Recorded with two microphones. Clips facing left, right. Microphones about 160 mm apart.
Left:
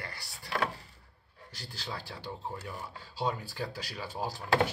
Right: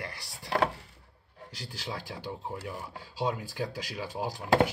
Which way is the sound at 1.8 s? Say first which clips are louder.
Right 3 dB; 10° right (ahead or behind).